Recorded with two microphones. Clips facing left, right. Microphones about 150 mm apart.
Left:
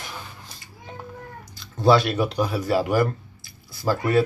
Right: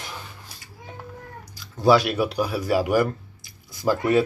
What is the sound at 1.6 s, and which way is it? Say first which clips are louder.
Speech: even; 10° right (ahead or behind).